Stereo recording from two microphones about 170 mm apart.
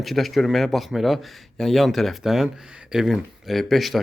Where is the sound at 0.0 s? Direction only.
Centre (ahead or behind).